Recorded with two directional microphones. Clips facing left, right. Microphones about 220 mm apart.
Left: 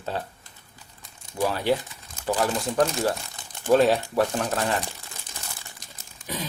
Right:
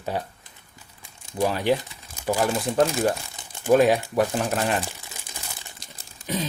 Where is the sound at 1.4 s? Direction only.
20° right (ahead or behind).